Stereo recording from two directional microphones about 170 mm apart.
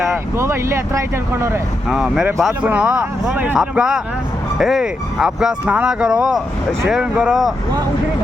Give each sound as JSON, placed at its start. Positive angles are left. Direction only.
{"t": 0.3, "sound": "speech", "side_deg": -15}
{"t": 1.9, "sound": "speech", "side_deg": -5}